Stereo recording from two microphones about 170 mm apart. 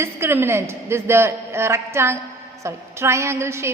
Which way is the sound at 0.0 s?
15° right (ahead or behind).